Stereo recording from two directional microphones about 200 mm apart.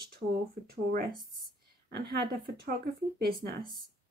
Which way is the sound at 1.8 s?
50° right (ahead or behind).